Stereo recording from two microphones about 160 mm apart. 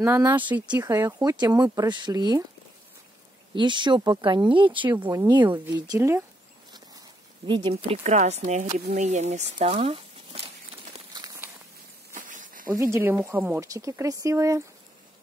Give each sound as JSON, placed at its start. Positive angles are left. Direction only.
{"t": 0.0, "sound": "a woman's voice", "side_deg": -15}
{"t": 3.5, "sound": "a woman's voice", "side_deg": -30}
{"t": 7.4, "sound": "speech", "side_deg": -30}
{"t": 12.1, "sound": "a sound", "side_deg": -55}
{"t": 12.9, "sound": "a woman's voice", "side_deg": -15}